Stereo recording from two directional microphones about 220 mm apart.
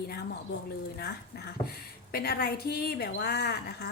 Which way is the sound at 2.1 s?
45° left (ahead or behind).